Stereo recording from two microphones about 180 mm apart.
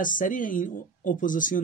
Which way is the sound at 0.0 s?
50° left (ahead or behind).